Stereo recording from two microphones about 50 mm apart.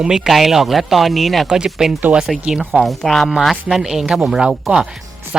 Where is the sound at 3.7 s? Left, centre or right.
Centre.